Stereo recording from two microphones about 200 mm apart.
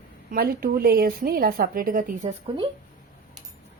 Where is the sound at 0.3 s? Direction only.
50° right (ahead or behind).